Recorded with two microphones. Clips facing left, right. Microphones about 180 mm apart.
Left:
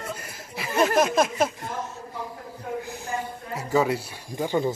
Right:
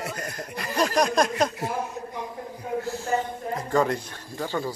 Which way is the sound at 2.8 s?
15° left (ahead or behind).